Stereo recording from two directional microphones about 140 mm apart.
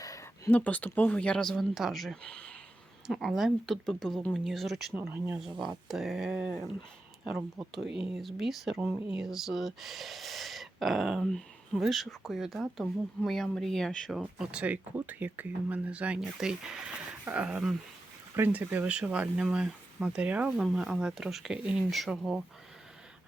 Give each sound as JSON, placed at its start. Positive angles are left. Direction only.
{"t": 0.0, "sound": "a sound", "side_deg": 25}
{"t": 0.6, "sound": "speech", "side_deg": 10}
{"t": 4.9, "sound": "speech", "side_deg": -15}
{"t": 5.4, "sound": "speech", "side_deg": 0}